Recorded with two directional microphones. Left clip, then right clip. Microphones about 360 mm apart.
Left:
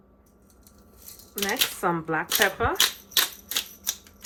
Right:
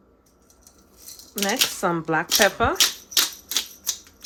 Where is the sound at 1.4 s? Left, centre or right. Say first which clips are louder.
Right 3 dB; centre.